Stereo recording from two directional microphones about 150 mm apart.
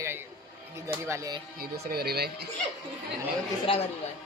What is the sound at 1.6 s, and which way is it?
Speech, 90° right.